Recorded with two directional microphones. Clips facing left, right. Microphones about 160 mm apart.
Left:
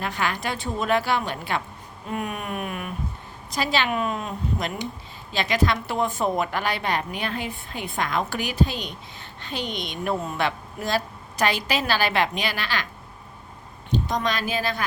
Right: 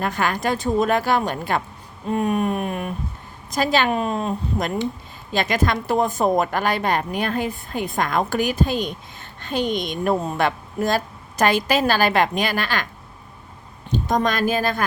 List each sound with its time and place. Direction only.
0.0 s a woman's voice: 45° right (ahead or behind)
2.1 s a woman's voice: 35° right (ahead or behind)
3.5 s a woman's voice: 45° right (ahead or behind)
5.3 s a woman's voice: 50° right (ahead or behind)
13.9 s a woman's voice: 50° right (ahead or behind)